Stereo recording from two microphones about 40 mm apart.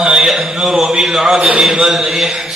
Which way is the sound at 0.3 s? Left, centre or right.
Centre.